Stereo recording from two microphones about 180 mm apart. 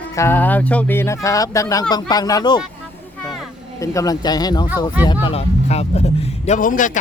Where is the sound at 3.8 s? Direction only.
20° left (ahead or behind).